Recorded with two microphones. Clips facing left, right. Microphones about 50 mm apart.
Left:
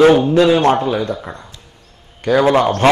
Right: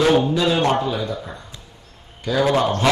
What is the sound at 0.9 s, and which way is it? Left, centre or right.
Mantra, left.